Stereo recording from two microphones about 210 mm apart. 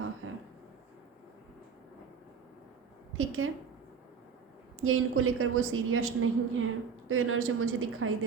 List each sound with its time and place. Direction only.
0.2 s a sound: 75° right (ahead or behind)
3.1 s a woman's voice: 80° right
4.8 s a woman's voice: 80° right